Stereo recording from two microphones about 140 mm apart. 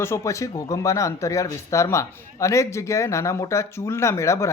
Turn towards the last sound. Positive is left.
turn(degrees=20)  # may be behind; listen again after turning